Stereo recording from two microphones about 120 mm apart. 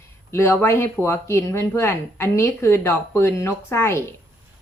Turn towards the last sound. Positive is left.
turn(degrees=20)  # may be behind; listen again after turning